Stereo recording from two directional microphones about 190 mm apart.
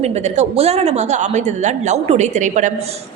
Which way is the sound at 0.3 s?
35° right (ahead or behind).